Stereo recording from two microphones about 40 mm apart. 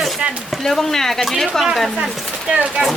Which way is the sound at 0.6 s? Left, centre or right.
Centre.